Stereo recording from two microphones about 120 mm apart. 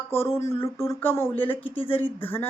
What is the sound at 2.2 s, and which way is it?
Speech, 15° left (ahead or behind).